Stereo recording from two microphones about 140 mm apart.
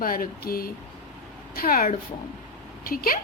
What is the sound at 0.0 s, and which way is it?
A woman's voice, 90° left.